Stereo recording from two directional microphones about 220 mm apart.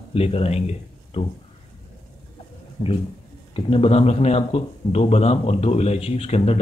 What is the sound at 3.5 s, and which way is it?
A man's voice, 25° left (ahead or behind).